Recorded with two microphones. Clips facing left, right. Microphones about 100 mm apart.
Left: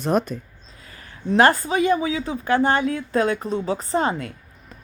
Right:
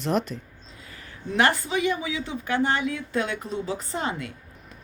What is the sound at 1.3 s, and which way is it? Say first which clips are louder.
A woman's voice: left 6 dB; 40° left (ahead or behind).